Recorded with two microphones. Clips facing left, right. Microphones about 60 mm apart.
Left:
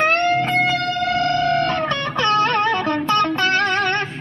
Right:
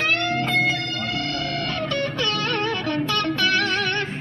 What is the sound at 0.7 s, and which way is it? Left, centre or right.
Guitar, left.